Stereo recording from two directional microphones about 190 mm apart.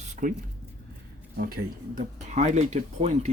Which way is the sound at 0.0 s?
45° right (ahead or behind).